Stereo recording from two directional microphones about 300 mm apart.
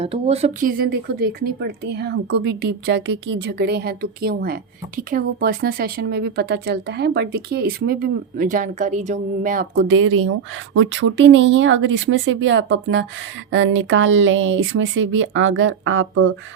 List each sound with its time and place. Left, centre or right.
0.0 s speech: centre; by 16.3 s right